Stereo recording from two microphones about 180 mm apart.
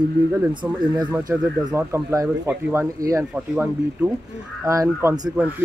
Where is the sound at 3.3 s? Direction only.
5° right (ahead or behind).